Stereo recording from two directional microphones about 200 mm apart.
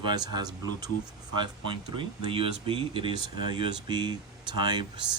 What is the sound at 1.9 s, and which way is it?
Speech, 25° right (ahead or behind).